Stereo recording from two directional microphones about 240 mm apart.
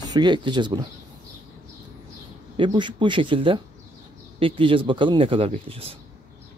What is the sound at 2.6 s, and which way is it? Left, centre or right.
Speech, centre.